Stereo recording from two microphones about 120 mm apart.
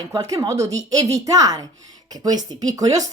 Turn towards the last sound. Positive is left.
turn(degrees=-30)  # may be behind; listen again after turning